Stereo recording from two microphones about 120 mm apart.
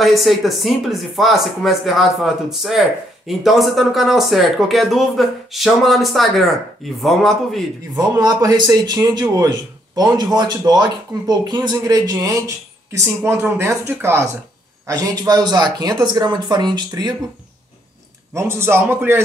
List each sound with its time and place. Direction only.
0.0 s speech: centre (ahead or behind)
8.0 s speech: 30° right (ahead or behind)
14.9 s speech: 30° right (ahead or behind)
18.3 s speech: 20° right (ahead or behind)